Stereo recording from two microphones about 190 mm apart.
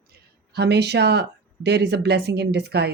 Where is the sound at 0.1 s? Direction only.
60° right (ahead or behind).